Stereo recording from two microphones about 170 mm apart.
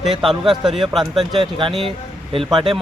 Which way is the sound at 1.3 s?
30° right (ahead or behind).